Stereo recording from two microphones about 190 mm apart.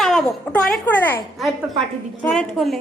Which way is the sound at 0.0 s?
Centre (ahead or behind).